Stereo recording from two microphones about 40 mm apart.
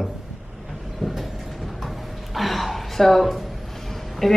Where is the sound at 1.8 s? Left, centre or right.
Centre.